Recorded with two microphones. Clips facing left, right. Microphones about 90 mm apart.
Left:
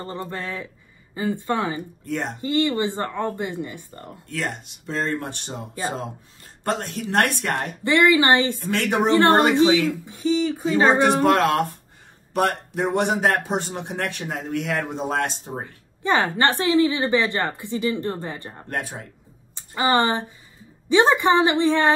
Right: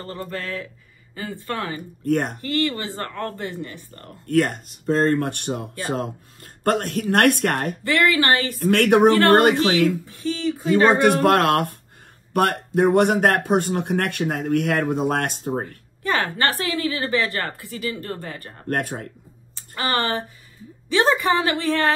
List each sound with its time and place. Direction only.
0.0 s a woman's voice: 20° left (ahead or behind)
2.0 s speech: 55° right (ahead or behind)
2.4 s a woman's voice: 20° left (ahead or behind)
4.3 s speech: 50° right (ahead or behind)
7.8 s a woman's voice: 20° left (ahead or behind)
8.6 s speech: 55° right (ahead or behind)
10.0 s a woman's voice: 20° left (ahead or behind)
10.9 s speech: 50° right (ahead or behind)
16.0 s a woman's voice: 20° left (ahead or behind)
18.7 s speech: 50° right (ahead or behind)
19.5 s a woman's voice: 20° left (ahead or behind)